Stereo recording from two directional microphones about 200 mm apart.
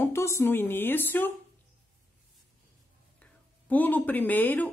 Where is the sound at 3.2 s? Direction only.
10° left (ahead or behind).